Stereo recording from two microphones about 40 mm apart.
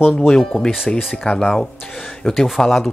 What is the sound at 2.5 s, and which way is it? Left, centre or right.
Speech, centre.